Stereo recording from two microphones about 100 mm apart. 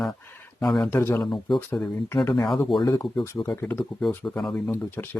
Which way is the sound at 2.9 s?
45° left (ahead or behind).